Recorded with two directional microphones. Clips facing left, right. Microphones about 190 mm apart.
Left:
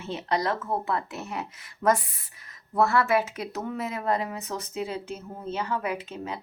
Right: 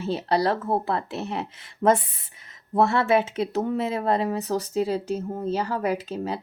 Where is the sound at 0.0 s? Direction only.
35° right (ahead or behind).